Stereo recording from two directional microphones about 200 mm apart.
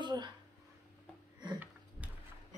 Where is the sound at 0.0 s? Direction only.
20° right (ahead or behind).